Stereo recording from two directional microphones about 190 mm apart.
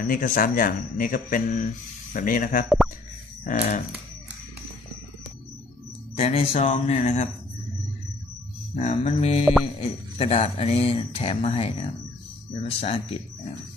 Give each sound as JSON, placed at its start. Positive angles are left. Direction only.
{"t": 0.0, "sound": "speech", "side_deg": 50}
{"t": 6.1, "sound": "speech", "side_deg": 30}
{"t": 8.7, "sound": "speech", "side_deg": 35}
{"t": 9.4, "sound": "mantra", "side_deg": 0}
{"t": 9.8, "sound": "speech", "side_deg": 35}